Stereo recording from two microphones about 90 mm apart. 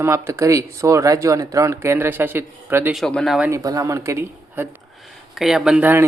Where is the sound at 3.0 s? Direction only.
5° left (ahead or behind).